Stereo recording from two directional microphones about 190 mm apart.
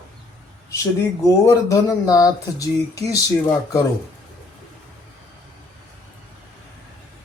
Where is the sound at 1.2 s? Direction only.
15° left (ahead or behind).